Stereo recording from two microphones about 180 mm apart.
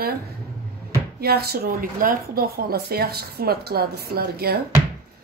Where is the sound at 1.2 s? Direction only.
60° right (ahead or behind).